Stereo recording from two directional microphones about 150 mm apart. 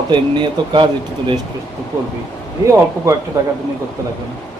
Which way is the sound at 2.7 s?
20° right (ahead or behind).